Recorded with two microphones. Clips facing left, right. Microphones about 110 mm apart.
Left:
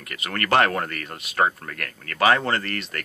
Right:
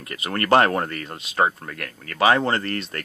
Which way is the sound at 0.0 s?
25° right (ahead or behind).